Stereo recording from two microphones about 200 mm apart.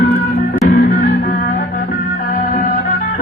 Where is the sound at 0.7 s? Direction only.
45° left (ahead or behind).